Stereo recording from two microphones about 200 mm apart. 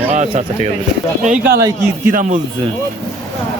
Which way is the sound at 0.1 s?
35° right (ahead or behind).